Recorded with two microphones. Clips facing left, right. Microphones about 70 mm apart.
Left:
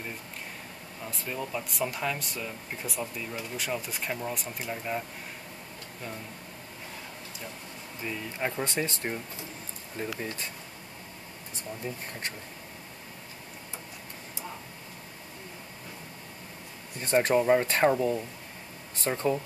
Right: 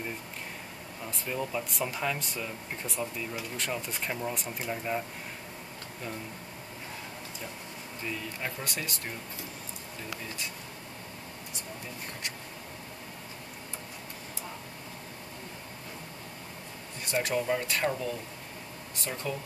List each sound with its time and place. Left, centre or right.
1.0 s speech: centre
8.0 s speech: centre
17.0 s speech: left